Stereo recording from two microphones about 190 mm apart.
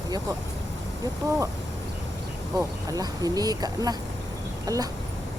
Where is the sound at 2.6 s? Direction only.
20° right (ahead or behind).